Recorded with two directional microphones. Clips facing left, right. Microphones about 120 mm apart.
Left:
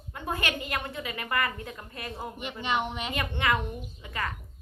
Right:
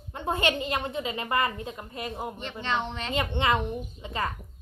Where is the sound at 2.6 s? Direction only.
15° left (ahead or behind).